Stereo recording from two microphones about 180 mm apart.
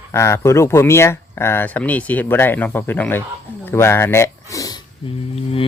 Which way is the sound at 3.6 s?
15° left (ahead or behind).